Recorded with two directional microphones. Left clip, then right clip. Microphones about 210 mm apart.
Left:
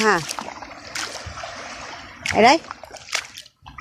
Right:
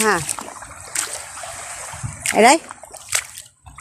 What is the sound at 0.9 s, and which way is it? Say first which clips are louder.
Stream: right 2 dB; 15° right (ahead or behind).